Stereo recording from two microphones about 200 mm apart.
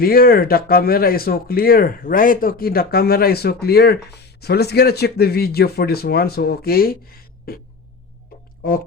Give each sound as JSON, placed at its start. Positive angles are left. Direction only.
{"t": 0.0, "sound": "speech", "side_deg": 50}
{"t": 8.6, "sound": "speech", "side_deg": 45}